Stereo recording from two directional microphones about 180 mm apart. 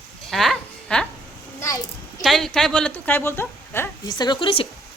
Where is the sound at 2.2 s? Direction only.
Centre (ahead or behind); by 4.7 s 30° left (ahead or behind).